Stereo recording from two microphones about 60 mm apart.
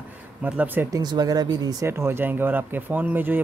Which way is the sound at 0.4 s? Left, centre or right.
Right.